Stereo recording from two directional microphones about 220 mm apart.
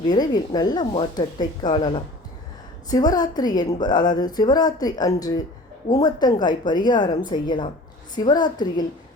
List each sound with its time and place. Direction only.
0.1 s a woman's voice: 20° left (ahead or behind)